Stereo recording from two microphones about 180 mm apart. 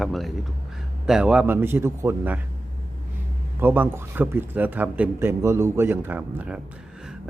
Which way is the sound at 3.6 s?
10° right (ahead or behind).